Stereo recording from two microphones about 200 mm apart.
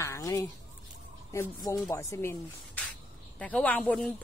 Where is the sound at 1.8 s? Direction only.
15° left (ahead or behind).